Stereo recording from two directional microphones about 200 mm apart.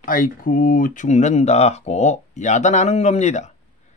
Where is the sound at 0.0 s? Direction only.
45° left (ahead or behind).